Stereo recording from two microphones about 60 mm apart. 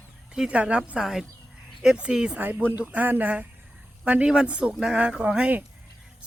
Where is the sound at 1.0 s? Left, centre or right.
Centre.